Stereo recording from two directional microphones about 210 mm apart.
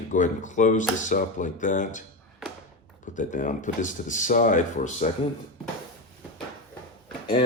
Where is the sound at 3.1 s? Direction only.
35° left (ahead or behind).